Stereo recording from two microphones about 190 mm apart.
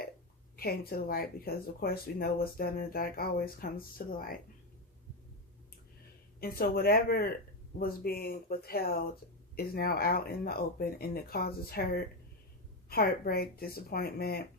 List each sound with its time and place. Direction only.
0.5 s speech: 50° left (ahead or behind)
6.4 s speech: 50° left (ahead or behind)